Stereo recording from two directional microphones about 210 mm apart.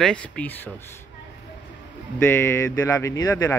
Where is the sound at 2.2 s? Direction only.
10° left (ahead or behind).